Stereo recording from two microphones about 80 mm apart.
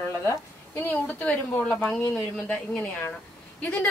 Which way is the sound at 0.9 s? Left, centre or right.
Centre.